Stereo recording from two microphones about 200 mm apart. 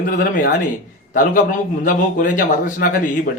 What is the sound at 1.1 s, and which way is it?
A man's voice, 40° left (ahead or behind).